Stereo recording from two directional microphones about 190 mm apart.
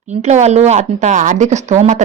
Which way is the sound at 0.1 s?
35° right (ahead or behind).